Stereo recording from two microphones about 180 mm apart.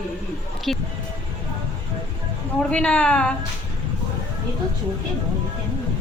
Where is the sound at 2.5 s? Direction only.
5° left (ahead or behind).